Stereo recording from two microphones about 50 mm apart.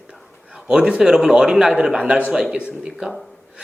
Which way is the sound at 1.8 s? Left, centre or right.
Right.